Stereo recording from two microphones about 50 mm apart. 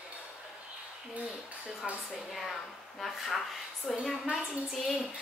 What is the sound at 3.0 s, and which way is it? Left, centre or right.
A woman's voice, centre.